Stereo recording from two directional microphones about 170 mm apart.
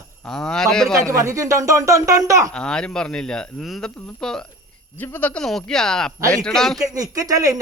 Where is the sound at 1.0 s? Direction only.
15° right (ahead or behind).